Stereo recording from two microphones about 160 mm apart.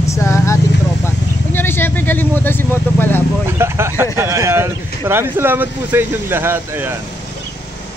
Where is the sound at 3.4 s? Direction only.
15° right (ahead or behind).